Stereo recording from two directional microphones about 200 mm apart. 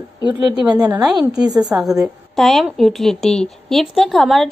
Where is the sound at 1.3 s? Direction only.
20° right (ahead or behind).